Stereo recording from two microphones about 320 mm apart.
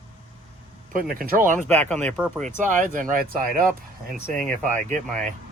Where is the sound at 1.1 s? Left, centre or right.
Right.